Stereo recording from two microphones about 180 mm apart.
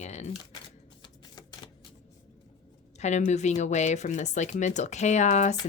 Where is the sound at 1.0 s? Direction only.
25° left (ahead or behind).